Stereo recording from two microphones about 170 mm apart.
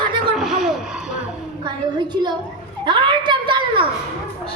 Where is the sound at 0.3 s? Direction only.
Centre (ahead or behind).